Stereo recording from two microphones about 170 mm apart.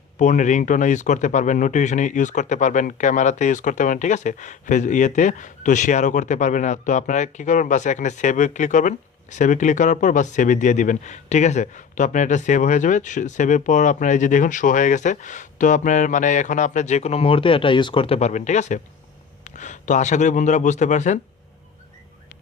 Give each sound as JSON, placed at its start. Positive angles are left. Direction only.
{"t": 0.2, "sound": "speech", "side_deg": 45}